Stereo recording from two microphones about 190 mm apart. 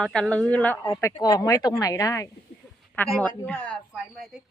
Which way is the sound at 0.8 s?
20° left (ahead or behind).